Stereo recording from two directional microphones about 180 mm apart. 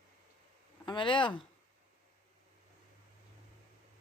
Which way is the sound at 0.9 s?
25° left (ahead or behind).